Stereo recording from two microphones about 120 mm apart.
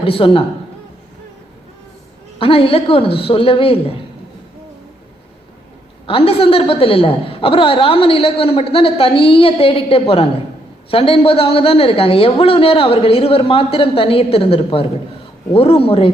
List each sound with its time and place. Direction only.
0.0 s a woman's voice: 50° left (ahead or behind)
2.4 s a woman's voice: 50° left (ahead or behind)
6.1 s a woman's voice: 50° left (ahead or behind)